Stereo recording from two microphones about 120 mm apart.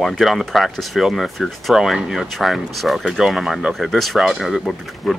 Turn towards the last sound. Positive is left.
turn(degrees=0)  # may be behind; listen again after turning